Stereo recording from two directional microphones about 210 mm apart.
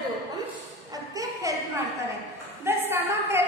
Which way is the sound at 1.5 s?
15° right (ahead or behind).